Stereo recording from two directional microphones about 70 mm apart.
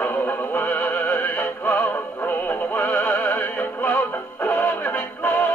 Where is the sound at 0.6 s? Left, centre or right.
Left.